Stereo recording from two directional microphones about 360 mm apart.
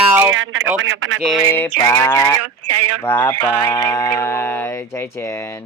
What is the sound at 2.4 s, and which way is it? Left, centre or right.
Speech, right.